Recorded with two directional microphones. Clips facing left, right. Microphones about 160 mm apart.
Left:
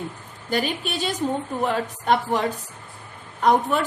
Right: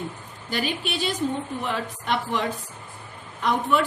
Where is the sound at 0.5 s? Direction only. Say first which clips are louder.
Left 3 dB; 45° left (ahead or behind).